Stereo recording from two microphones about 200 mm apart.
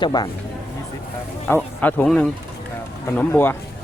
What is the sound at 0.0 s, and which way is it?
Speech, 20° left (ahead or behind).